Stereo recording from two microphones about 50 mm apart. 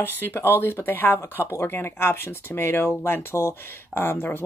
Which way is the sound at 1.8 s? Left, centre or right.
Left.